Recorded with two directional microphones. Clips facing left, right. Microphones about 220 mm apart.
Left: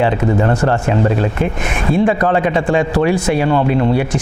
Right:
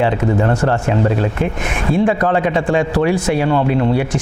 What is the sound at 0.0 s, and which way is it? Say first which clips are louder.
Speech: left 1 dB; 20° left (ahead or behind).